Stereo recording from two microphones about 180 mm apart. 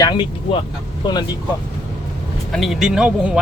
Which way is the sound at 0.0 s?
25° left (ahead or behind).